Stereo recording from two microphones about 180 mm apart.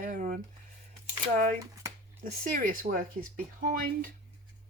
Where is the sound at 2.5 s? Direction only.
50° right (ahead or behind).